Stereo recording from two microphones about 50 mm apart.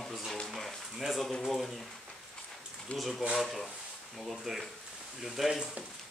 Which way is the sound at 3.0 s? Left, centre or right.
Centre.